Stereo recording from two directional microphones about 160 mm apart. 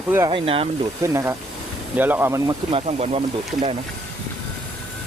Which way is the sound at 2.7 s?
40° right (ahead or behind).